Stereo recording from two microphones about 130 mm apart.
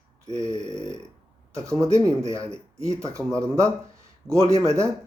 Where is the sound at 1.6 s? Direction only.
25° right (ahead or behind).